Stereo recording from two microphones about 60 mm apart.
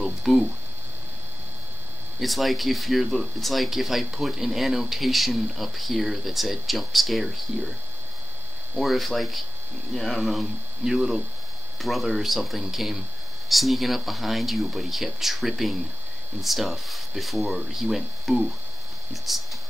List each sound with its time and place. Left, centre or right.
0.0 s a sound: centre
2.1 s speech: centre
8.7 s speech: centre
10.8 s speech: centre